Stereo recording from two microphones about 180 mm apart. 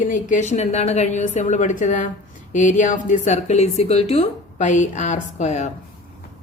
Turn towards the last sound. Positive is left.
turn(degrees=40)  # may be behind; listen again after turning